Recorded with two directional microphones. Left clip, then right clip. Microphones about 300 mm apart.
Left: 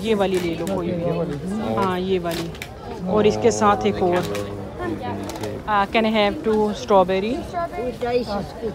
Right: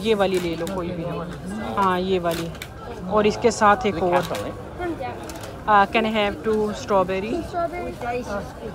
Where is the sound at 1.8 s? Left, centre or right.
Centre.